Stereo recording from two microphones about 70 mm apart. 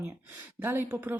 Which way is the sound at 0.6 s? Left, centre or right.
Right.